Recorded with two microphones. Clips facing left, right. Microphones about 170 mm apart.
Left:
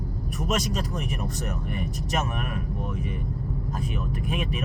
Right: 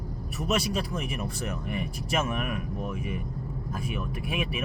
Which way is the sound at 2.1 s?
40° left (ahead or behind).